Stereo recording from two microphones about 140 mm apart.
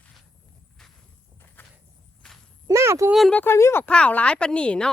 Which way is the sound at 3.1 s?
Centre (ahead or behind).